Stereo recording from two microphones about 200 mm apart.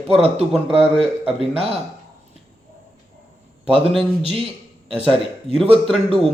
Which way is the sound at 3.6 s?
25° right (ahead or behind).